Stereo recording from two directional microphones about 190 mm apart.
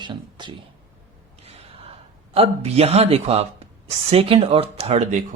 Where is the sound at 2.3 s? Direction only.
30° right (ahead or behind).